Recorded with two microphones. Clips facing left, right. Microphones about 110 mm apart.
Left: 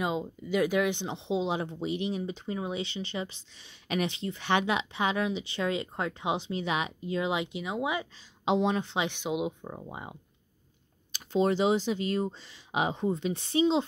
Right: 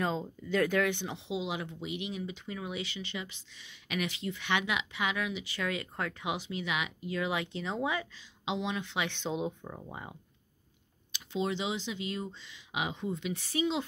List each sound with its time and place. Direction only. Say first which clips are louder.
0.0 s speech: left 2 dB; 15° left (ahead or behind)
8.5 s speech: left 8 dB; 40° left (ahead or behind)
9.1 s speech: left 3 dB; 15° left (ahead or behind)
11.1 s speech: left 7 dB; 45° left (ahead or behind); by 13.8 s 25° left (ahead or behind)